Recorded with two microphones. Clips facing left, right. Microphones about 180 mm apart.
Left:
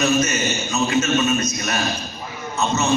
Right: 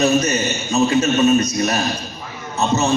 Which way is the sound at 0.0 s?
35° right (ahead or behind).